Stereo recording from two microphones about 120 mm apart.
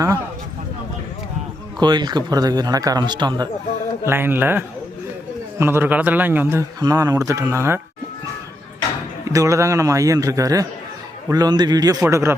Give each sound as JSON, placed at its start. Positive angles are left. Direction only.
{"t": 1.8, "sound": "a man's voice", "side_deg": -35}
{"t": 4.0, "sound": "a man's voice", "side_deg": -20}
{"t": 6.7, "sound": "a man's voice", "side_deg": -30}
{"t": 9.3, "sound": "a man's voice", "side_deg": -25}
{"t": 12.0, "sound": "a man's voice", "side_deg": -20}